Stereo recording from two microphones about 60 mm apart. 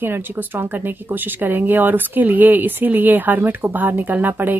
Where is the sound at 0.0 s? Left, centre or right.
Right.